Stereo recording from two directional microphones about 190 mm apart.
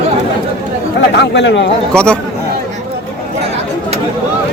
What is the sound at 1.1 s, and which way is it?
Speech, 65° left (ahead or behind).